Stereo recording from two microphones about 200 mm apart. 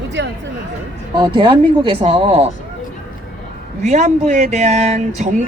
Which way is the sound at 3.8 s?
35° right (ahead or behind).